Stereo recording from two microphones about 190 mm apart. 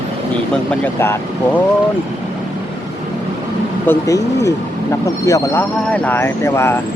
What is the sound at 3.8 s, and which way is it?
Speech, 15° left (ahead or behind).